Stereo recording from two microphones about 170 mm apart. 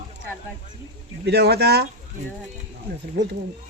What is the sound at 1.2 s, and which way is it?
Speech, 75° right (ahead or behind).